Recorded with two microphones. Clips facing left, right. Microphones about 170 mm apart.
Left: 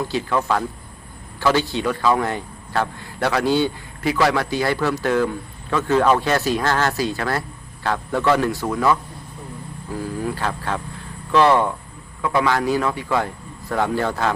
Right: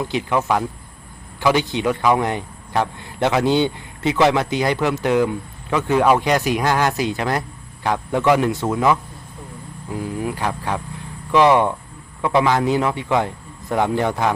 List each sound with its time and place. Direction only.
0.0 s a man's voice: 20° right (ahead or behind)